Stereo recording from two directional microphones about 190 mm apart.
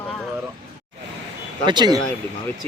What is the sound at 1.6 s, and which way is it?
Speech, 20° right (ahead or behind).